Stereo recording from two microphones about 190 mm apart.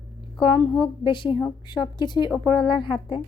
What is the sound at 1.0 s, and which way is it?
A woman's voice, 25° left (ahead or behind).